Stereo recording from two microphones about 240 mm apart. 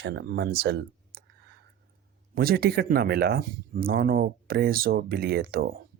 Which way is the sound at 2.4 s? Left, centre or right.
Right.